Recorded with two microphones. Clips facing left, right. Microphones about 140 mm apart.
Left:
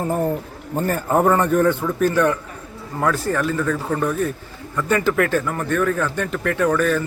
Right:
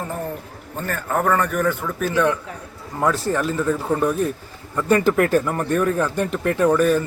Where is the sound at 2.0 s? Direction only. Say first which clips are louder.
Left 3 dB; 10° right (ahead or behind).